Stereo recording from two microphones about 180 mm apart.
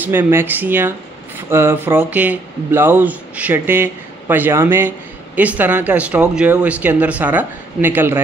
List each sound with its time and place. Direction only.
0.0 s speech: 10° right (ahead or behind)